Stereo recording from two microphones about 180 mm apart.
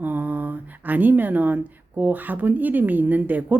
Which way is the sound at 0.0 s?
10° right (ahead or behind).